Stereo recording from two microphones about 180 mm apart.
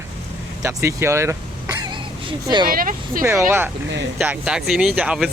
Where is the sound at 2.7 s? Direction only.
50° right (ahead or behind).